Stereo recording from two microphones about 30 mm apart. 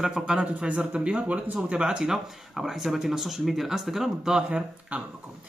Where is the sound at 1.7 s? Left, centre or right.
Right.